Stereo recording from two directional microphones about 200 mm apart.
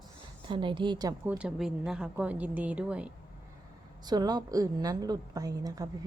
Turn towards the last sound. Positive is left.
turn(degrees=-20)  # may be behind; listen again after turning